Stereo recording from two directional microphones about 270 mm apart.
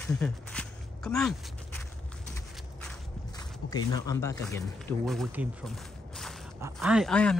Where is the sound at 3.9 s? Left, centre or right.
Centre.